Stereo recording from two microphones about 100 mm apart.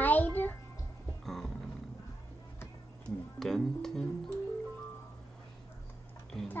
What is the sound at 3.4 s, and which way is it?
Music, 5° left (ahead or behind).